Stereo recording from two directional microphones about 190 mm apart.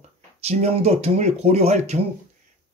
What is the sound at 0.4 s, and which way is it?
Speech, 35° right (ahead or behind).